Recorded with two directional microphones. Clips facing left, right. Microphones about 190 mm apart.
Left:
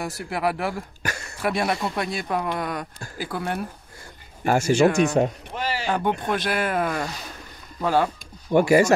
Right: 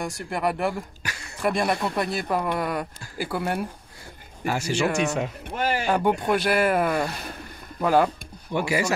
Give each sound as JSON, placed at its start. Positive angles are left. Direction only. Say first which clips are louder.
{"t": 0.0, "sound": "speech", "louder": "left 1 dB", "side_deg": 5}
{"t": 1.0, "sound": "a sound", "louder": "left 6 dB", "side_deg": 45}
{"t": 1.4, "sound": "speech", "louder": "right 1 dB", "side_deg": 0}
{"t": 4.5, "sound": "speech", "louder": "left 6 dB", "side_deg": 45}
{"t": 5.6, "sound": "speech", "louder": "right 3 dB", "side_deg": -50}
{"t": 5.9, "sound": "speech", "louder": "right 1 dB", "side_deg": -10}
{"t": 7.1, "sound": "speech", "louder": "right 2 dB", "side_deg": -60}
{"t": 7.8, "sound": "speech", "louder": "right 2 dB", "side_deg": -5}
{"t": 8.5, "sound": "speech", "louder": "left 8 dB", "side_deg": 50}